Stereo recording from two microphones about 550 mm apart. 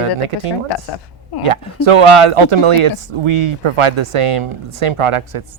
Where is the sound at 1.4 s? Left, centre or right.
Right.